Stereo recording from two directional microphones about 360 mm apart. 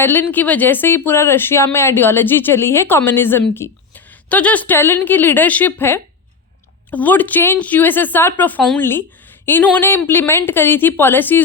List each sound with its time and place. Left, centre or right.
0.0 s speech: centre